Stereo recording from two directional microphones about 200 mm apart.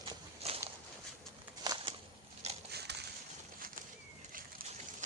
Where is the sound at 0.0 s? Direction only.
30° right (ahead or behind).